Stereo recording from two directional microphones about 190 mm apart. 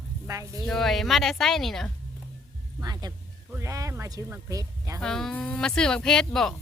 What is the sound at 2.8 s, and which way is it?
Speech, 20° right (ahead or behind).